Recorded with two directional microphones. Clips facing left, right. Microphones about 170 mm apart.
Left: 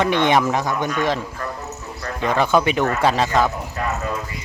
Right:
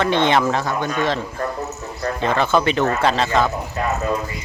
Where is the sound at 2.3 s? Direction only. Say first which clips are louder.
Left 1 dB; 10° left (ahead or behind).